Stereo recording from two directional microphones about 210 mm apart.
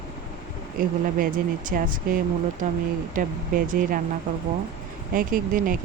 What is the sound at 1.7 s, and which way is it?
Speech, 40° right (ahead or behind).